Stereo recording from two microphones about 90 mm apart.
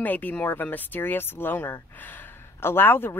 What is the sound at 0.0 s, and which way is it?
Speech, 20° left (ahead or behind).